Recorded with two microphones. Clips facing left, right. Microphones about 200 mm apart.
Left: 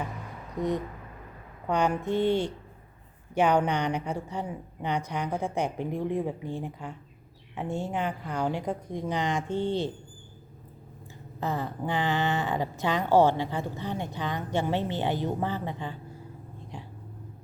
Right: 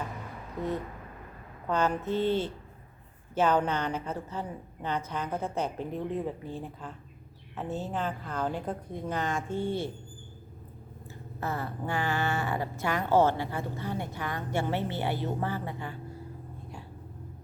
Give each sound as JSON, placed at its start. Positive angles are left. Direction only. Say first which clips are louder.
{"t": 1.6, "sound": "speech", "louder": "left 2 dB", "side_deg": 15}
{"t": 11.3, "sound": "speech", "louder": "left 3 dB", "side_deg": 15}